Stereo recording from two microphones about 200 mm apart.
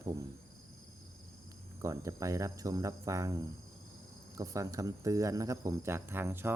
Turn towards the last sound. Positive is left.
turn(degrees=-10)  # may be behind; listen again after turning